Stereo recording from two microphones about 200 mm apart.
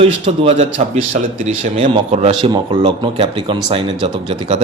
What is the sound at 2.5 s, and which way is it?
Speech, 25° right (ahead or behind).